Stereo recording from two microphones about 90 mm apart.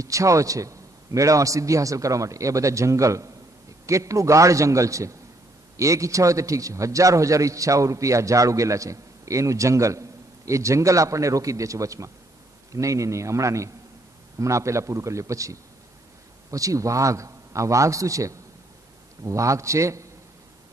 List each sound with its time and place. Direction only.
0.0 s a man's voice: 35° right (ahead or behind)